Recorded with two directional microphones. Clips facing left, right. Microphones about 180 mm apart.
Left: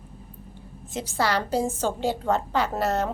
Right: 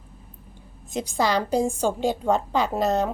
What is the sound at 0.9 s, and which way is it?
A woman's voice, 15° right (ahead or behind).